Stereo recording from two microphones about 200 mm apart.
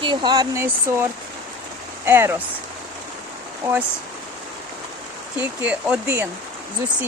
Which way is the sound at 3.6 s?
10° right (ahead or behind).